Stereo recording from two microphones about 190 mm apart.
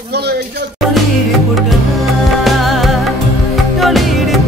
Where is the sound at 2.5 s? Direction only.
Centre (ahead or behind).